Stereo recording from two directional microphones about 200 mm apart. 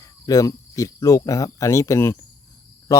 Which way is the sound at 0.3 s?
15° left (ahead or behind).